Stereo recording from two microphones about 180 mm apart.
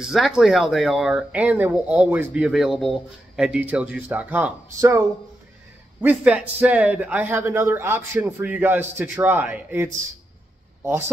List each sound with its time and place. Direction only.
0.0 s a man's voice: centre (ahead or behind)